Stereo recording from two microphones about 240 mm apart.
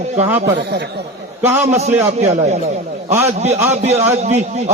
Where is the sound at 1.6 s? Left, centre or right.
Right.